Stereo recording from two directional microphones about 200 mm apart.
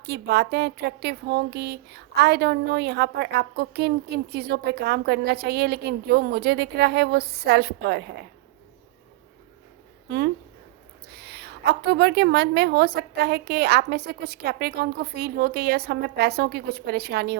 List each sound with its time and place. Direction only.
0.0 s speech: 55° right (ahead or behind)
10.1 s a woman's voice: 55° right (ahead or behind)